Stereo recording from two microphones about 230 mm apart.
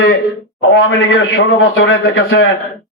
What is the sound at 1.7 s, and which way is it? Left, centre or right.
Speech, left.